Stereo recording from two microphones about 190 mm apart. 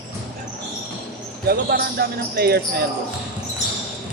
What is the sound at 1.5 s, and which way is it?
Speech, 55° right (ahead or behind).